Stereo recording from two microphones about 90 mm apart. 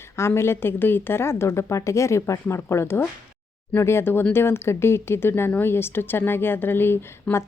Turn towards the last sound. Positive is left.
turn(degrees=25)  # may be behind; listen again after turning